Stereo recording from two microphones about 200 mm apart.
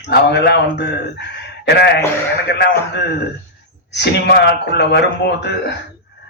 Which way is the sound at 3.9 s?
55° left (ahead or behind).